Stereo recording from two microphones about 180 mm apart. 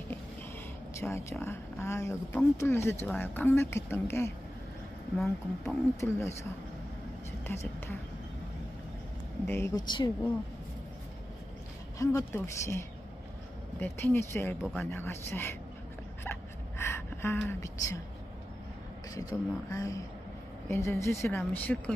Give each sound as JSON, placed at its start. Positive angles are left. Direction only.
{"t": 0.9, "sound": "speech", "side_deg": 15}
{"t": 5.1, "sound": "speech", "side_deg": 0}
{"t": 5.9, "sound": "speech", "side_deg": 15}
{"t": 9.5, "sound": "speech", "side_deg": 15}
{"t": 9.8, "sound": "speech", "side_deg": 25}
{"t": 12.0, "sound": "speech", "side_deg": 20}
{"t": 16.3, "sound": "a sound", "side_deg": 15}
{"t": 19.1, "sound": "speech", "side_deg": 20}